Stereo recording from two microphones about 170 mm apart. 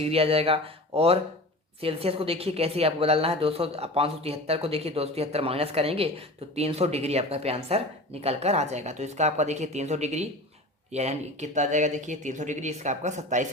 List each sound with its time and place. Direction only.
0.0 s speech: 35° right (ahead or behind)